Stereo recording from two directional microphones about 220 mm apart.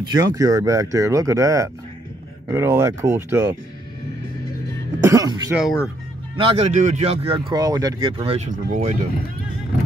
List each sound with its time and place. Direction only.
0.1 s speech: 15° right (ahead or behind)
5.0 s speech: 15° right (ahead or behind)
8.2 s speech: 30° right (ahead or behind)